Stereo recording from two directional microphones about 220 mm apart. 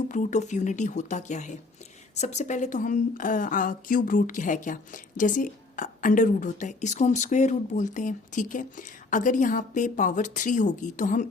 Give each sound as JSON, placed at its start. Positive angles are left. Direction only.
{"t": 0.1, "sound": "a woman's voice", "side_deg": 35}